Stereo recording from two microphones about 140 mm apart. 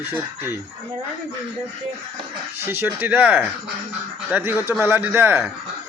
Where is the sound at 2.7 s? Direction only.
15° right (ahead or behind).